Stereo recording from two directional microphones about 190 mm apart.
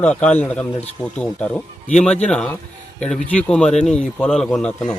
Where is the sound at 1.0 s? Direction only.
30° left (ahead or behind).